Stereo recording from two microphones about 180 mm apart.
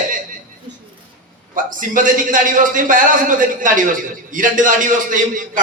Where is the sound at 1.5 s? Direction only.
50° right (ahead or behind).